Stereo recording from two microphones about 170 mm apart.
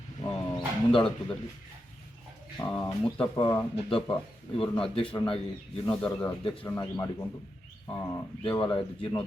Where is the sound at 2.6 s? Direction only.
20° left (ahead or behind).